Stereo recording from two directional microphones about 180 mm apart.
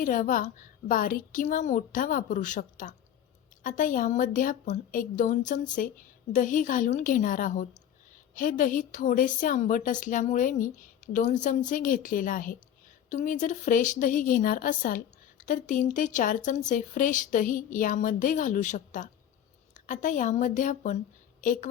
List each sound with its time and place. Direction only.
0.0 s a woman's voice: 50° left (ahead or behind)